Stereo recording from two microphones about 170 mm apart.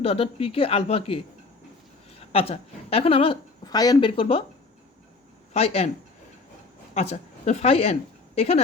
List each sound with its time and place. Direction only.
0.0 s a woman's voice: 35° left (ahead or behind)
2.3 s a woman's voice: 35° left (ahead or behind)
5.5 s a woman's voice: 35° left (ahead or behind)
6.9 s a woman's voice: 40° left (ahead or behind)